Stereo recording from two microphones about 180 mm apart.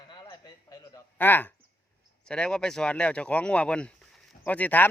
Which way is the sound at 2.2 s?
5° left (ahead or behind).